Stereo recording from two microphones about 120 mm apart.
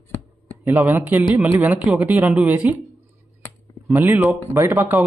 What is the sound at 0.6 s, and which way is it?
Speech, 25° right (ahead or behind).